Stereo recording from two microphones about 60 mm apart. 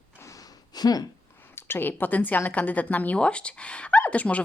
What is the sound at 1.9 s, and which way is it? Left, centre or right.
Speech, left.